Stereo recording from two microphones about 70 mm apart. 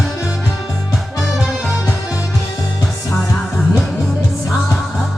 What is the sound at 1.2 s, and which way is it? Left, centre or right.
Music, centre.